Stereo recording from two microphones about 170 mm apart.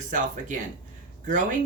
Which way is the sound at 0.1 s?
45° right (ahead or behind).